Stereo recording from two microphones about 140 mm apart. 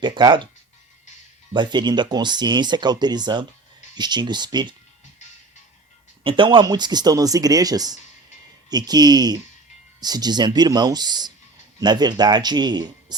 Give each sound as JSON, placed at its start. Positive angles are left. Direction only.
{"t": 0.0, "sound": "speech", "side_deg": -35}
{"t": 1.5, "sound": "speech", "side_deg": -30}
{"t": 6.2, "sound": "speech", "side_deg": -35}